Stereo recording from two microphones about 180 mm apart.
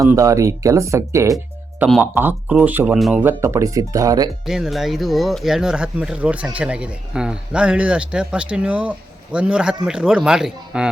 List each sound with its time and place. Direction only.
0.0 s speech: 15° right (ahead or behind)
4.4 s speech: centre (ahead or behind)